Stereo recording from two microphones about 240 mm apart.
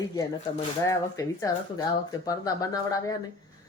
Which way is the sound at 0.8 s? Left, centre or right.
Centre.